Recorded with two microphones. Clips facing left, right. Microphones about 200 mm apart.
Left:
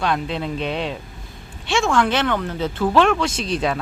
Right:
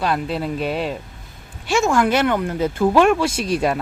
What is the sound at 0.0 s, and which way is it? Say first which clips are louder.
Speech: right 1 dB; 5° right (ahead or behind).